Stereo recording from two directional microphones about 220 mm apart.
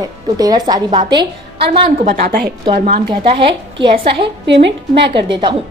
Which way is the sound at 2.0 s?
40° right (ahead or behind).